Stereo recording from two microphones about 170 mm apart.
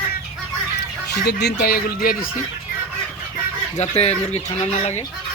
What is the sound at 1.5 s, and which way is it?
Speech, 65° left (ahead or behind).